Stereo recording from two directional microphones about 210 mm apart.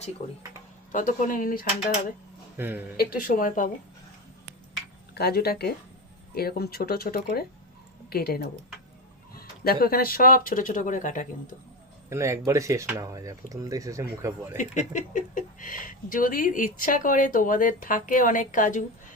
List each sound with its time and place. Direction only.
0.9 s speech: 40° left (ahead or behind)
2.6 s speech: 10° right (ahead or behind)
3.0 s speech: 45° left (ahead or behind)
5.1 s speech: 50° left (ahead or behind)
12.0 s speech: 15° right (ahead or behind)
14.5 s speech: 35° left (ahead or behind)